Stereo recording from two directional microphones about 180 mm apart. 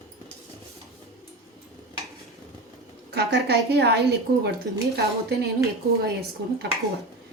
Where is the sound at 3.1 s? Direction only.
65° right (ahead or behind).